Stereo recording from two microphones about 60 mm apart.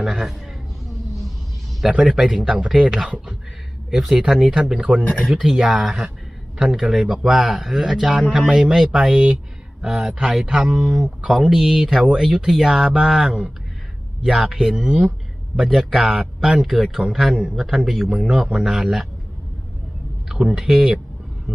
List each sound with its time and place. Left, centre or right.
0.0 s speech: centre
1.8 s a man's voice: centre
10.7 s a man's voice: centre
11.3 s a man's voice: centre
20.2 s speech: centre